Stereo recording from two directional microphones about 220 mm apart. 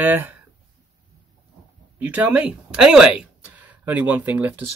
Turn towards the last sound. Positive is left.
turn(degrees=-10)  # may be behind; listen again after turning